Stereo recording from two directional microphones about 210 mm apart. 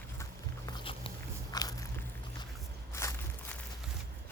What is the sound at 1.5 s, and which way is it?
Biting, 15° left (ahead or behind).